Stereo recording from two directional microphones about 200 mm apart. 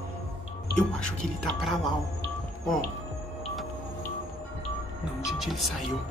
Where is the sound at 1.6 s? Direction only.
Centre (ahead or behind).